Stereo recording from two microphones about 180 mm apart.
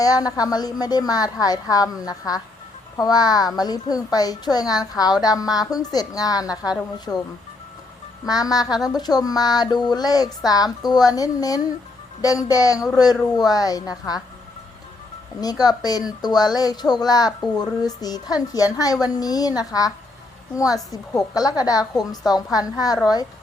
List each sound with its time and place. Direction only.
0.0 s speech: 20° left (ahead or behind)
7.1 s speech: 10° left (ahead or behind)
8.2 s speech: 20° left (ahead or behind)
15.4 s speech: 20° left (ahead or behind)